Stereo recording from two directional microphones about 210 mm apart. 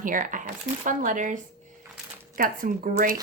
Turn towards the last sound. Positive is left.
turn(degrees=-40)  # may be behind; listen again after turning